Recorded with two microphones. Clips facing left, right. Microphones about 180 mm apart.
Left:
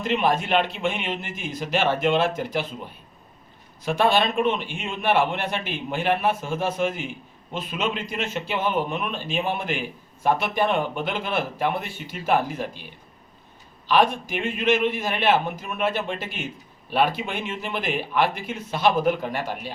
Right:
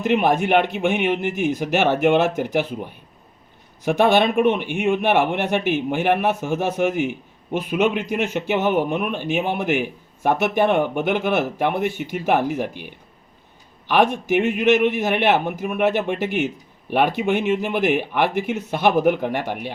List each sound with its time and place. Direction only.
0.0 s a man's voice: 60° right (ahead or behind)
3.8 s a man's voice: 65° right (ahead or behind)